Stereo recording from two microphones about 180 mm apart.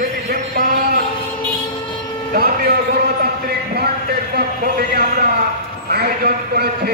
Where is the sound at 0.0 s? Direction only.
55° right (ahead or behind).